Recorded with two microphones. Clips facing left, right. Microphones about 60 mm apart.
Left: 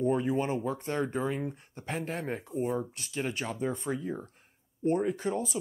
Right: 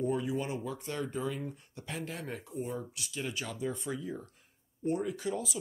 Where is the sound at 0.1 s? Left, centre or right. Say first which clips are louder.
Left 5 dB; left.